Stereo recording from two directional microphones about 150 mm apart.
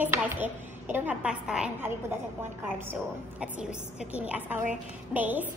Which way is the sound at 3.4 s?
5° right (ahead or behind).